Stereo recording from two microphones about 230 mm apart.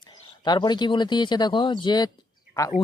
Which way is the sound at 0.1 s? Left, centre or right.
Centre.